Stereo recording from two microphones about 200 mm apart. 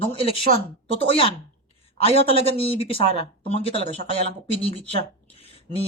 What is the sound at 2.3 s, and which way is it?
Speech, 30° right (ahead or behind).